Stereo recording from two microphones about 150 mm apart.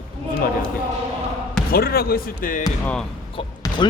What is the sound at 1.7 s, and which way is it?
Speech, 90° left.